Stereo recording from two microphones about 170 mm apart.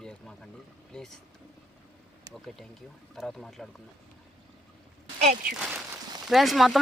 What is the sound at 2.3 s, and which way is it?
Speech, centre (ahead or behind).